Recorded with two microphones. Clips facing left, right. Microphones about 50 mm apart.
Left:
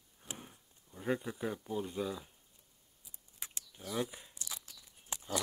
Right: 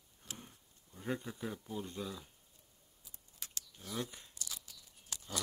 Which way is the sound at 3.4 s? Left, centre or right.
Centre.